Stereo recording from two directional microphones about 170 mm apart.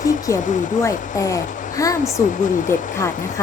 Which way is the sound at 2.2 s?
50° left (ahead or behind).